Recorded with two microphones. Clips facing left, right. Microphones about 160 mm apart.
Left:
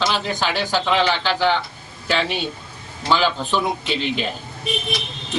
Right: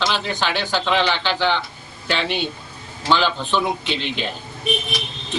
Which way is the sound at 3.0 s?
5° left (ahead or behind).